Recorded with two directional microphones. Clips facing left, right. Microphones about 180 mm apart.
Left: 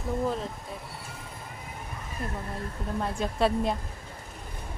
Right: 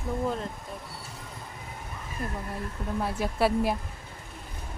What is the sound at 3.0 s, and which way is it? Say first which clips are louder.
Speech: even; 5° right (ahead or behind).